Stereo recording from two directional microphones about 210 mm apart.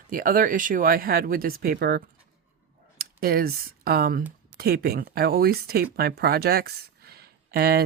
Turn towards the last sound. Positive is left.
turn(degrees=-50)  # may be behind; listen again after turning